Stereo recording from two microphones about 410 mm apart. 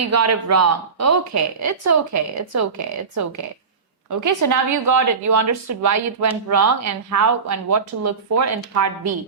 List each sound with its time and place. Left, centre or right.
0.0 s a woman's voice: right